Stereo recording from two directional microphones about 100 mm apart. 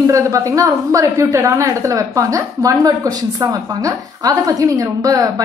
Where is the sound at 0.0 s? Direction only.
30° right (ahead or behind).